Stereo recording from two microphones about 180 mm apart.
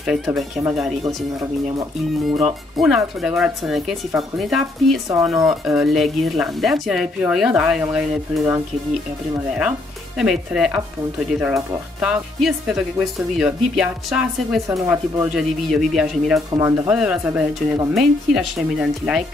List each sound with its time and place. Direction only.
0.0 s speech: 5° right (ahead or behind)
2.3 s speech: 5° right (ahead or behind)
16.5 s speech: 15° right (ahead or behind)
16.9 s speech: 5° right (ahead or behind)